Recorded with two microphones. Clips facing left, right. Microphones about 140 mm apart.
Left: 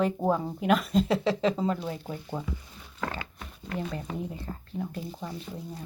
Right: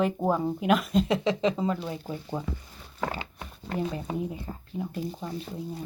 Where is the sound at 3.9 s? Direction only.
20° right (ahead or behind).